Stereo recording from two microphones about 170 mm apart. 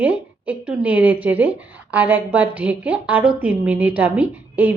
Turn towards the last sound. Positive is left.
turn(degrees=-10)  # may be behind; listen again after turning